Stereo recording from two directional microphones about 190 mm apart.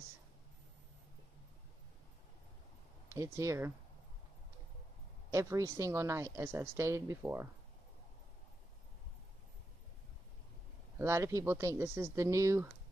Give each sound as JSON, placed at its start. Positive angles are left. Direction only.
{"t": 3.1, "sound": "speech", "side_deg": -15}
{"t": 5.3, "sound": "speech", "side_deg": -15}
{"t": 11.0, "sound": "speech", "side_deg": -15}